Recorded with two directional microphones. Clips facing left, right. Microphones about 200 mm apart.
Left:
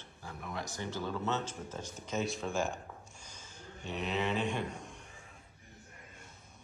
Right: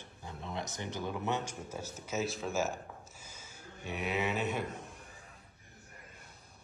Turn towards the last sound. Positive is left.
turn(degrees=-5)  # may be behind; listen again after turning